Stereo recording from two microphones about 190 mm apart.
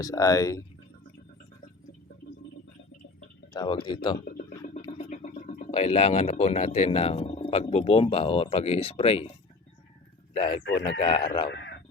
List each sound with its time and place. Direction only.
0.0 s speech: 20° left (ahead or behind)
3.5 s a man's voice: 25° left (ahead or behind)
4.3 s a sound: 45° left (ahead or behind)
4.9 s speech: 40° left (ahead or behind)
10.3 s a man's voice: 25° left (ahead or behind)
11.4 s a sound: 65° left (ahead or behind)